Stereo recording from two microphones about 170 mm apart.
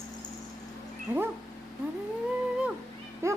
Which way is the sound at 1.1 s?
10° right (ahead or behind).